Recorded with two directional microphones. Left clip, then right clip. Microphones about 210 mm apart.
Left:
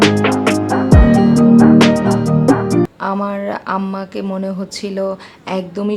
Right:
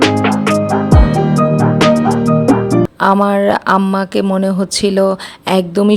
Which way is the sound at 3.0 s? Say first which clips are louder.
Right 9 dB; 40° right (ahead or behind).